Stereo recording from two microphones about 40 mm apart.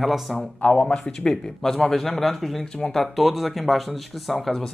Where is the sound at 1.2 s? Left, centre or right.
Centre.